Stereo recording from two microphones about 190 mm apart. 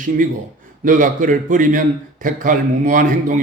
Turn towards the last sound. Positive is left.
turn(degrees=-45)  # may be behind; listen again after turning